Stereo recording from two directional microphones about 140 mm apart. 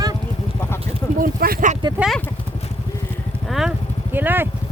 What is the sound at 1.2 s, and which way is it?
Speech, 85° right.